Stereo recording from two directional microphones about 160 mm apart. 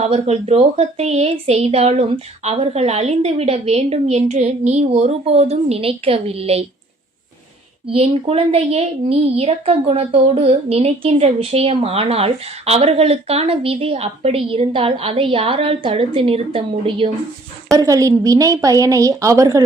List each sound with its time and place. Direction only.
0.0 s a woman's voice: 40° right (ahead or behind)
7.9 s a woman's voice: 35° right (ahead or behind)
17.7 s a woman's voice: 20° right (ahead or behind)